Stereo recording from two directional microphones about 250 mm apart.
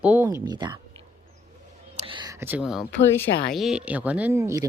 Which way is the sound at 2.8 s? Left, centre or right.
Centre.